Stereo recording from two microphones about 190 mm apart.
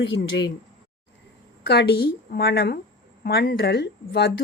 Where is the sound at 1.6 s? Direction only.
60° left (ahead or behind).